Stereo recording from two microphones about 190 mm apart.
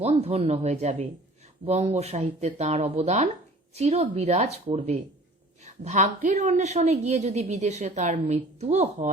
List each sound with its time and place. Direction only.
0.0 s a woman's voice: 30° right (ahead or behind)